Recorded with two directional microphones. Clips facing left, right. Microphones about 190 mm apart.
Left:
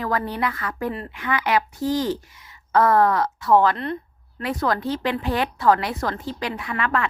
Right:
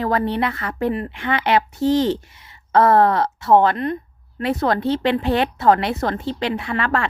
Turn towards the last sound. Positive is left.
turn(degrees=-30)  # may be behind; listen again after turning